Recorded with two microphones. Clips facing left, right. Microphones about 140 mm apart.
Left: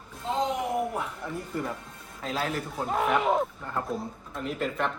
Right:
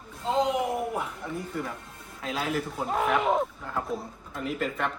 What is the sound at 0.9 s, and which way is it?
Speech, centre (ahead or behind).